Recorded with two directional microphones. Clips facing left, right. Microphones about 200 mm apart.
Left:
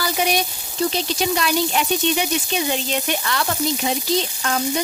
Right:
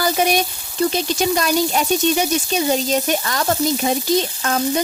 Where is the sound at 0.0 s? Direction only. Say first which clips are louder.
Right 4 dB; 45° right (ahead or behind).